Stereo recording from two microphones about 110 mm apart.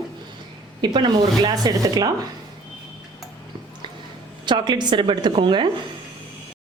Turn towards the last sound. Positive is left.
turn(degrees=-50)  # may be behind; listen again after turning